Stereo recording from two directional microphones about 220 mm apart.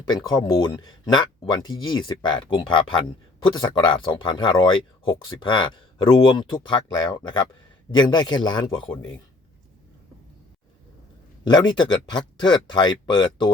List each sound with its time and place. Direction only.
0.1 s speech: 20° left (ahead or behind)
11.4 s speech: 20° left (ahead or behind)